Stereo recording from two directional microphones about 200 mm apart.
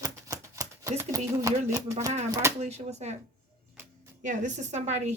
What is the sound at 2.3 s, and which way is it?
Speech, 15° right (ahead or behind).